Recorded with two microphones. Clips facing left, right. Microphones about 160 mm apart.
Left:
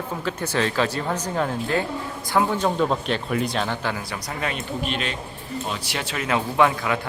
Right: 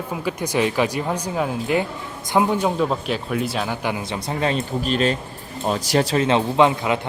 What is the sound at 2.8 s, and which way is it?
Speech, 5° right (ahead or behind).